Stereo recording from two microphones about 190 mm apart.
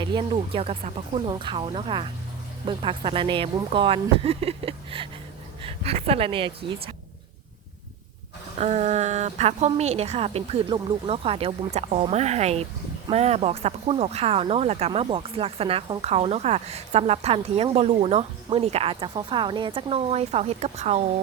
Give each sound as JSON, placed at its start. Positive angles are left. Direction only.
{"t": 0.0, "sound": "speech", "side_deg": -25}
{"t": 8.5, "sound": "speech", "side_deg": -35}